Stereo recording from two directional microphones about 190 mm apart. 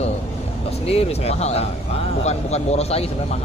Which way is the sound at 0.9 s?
35° left (ahead or behind).